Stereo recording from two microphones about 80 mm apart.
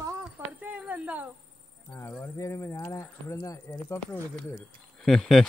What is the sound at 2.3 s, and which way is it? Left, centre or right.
Speech, left.